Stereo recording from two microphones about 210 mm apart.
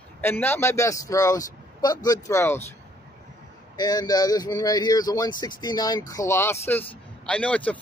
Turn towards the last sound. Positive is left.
turn(degrees=5)  # may be behind; listen again after turning